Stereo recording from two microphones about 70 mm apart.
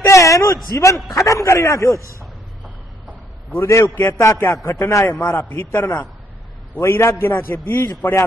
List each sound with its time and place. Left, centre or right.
0.1 s a sound: left
0.7 s a man's voice: left
3.5 s a man's voice: left
5.6 s a man's voice: left